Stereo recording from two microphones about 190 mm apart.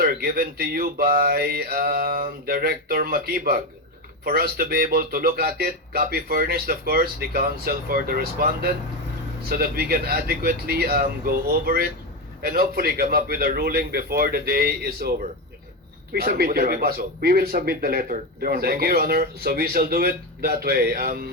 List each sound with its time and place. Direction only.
0.0 s speech: 55° right (ahead or behind)
16.1 s speech: 55° right (ahead or behind)